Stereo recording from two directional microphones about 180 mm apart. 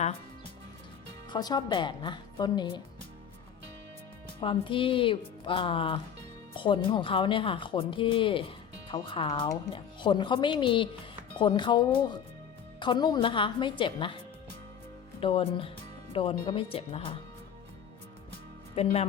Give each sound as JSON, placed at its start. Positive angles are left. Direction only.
{"t": 1.3, "sound": "speech", "side_deg": 25}
{"t": 4.4, "sound": "speech", "side_deg": 30}
{"t": 15.2, "sound": "speech", "side_deg": 30}
{"t": 18.7, "sound": "speech", "side_deg": 35}